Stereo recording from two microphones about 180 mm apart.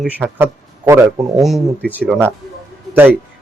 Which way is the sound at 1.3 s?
Centre (ahead or behind).